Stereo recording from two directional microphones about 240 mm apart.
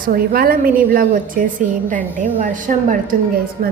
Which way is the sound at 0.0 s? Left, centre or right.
Right.